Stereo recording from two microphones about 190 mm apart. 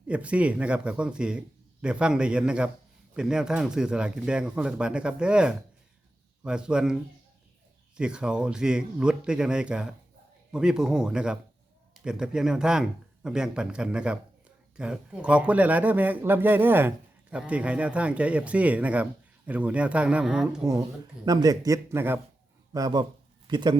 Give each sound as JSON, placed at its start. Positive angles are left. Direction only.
{"t": 0.1, "sound": "a man's voice", "side_deg": -5}
{"t": 21.2, "sound": "speech", "side_deg": -20}